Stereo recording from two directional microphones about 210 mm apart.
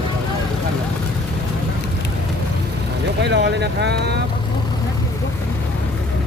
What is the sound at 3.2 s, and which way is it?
Vehicle, 55° right (ahead or behind).